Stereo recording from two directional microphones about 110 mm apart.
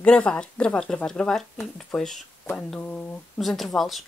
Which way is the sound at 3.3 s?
Centre (ahead or behind).